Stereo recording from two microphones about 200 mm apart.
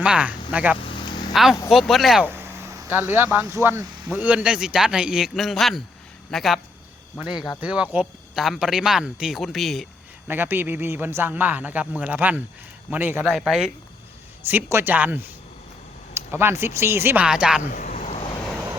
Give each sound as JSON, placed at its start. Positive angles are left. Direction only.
{"t": 0.0, "sound": "a man's voice", "side_deg": -5}
{"t": 0.8, "sound": "vehicle", "side_deg": 25}
{"t": 1.3, "sound": "speech", "side_deg": 0}
{"t": 10.2, "sound": "a man's voice", "side_deg": -10}
{"t": 17.6, "sound": "a sound", "side_deg": 40}